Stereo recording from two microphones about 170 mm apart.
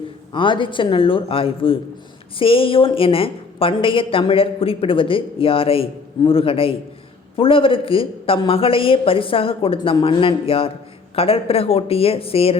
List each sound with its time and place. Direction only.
0.3 s a woman's voice: 30° left (ahead or behind)